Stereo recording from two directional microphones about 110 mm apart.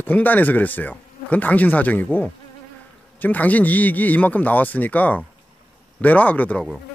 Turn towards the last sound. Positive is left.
turn(degrees=10)  # may be behind; listen again after turning